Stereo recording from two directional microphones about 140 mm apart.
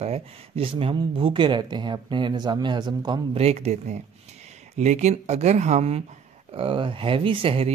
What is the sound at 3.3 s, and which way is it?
Speech, 50° right (ahead or behind).